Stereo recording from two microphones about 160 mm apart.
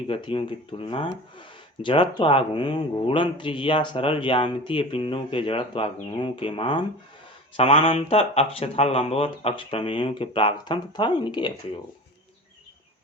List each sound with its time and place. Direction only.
0.1 s speech: 35° left (ahead or behind)